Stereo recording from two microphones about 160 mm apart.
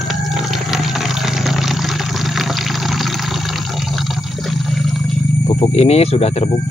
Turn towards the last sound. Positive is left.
turn(degrees=40)  # may be behind; listen again after turning